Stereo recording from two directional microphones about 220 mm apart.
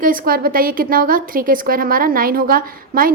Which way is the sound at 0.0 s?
40° right (ahead or behind).